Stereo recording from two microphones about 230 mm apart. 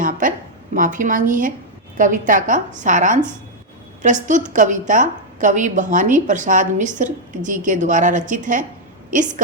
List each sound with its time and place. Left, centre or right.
0.0 s a woman's voice: right